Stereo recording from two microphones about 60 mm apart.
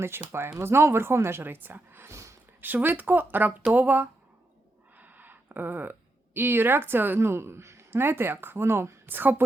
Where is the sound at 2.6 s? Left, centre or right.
Right.